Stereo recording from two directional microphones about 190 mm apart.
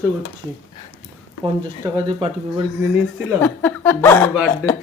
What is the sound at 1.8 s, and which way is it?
Speech, 25° right (ahead or behind).